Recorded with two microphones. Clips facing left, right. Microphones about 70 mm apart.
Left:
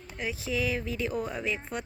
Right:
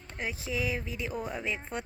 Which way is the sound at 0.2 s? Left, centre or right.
Right.